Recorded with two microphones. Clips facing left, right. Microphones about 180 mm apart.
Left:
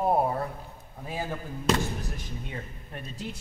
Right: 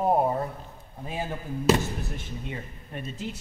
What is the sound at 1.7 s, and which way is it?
Speech, 5° right (ahead or behind).